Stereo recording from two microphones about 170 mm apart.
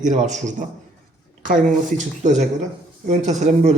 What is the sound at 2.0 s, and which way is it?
A man's voice, 45° right (ahead or behind).